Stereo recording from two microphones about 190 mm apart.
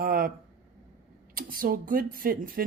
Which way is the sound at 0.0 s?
50° right (ahead or behind).